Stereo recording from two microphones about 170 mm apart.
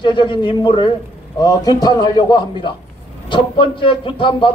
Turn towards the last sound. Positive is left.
turn(degrees=30)  # may be behind; listen again after turning